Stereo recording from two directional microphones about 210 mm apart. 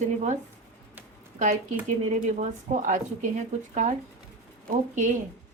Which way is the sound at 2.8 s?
40° right (ahead or behind).